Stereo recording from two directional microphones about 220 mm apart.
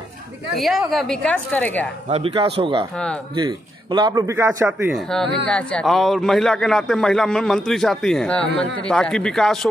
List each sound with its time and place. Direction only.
0.6 s a man's voice: centre (ahead or behind)
2.0 s a man's voice: 30° right (ahead or behind); by 4.9 s 10° right (ahead or behind)
4.9 s a man's voice: centre (ahead or behind)